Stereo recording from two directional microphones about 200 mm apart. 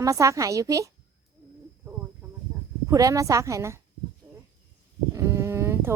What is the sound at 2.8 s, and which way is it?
Speech, 15° right (ahead or behind).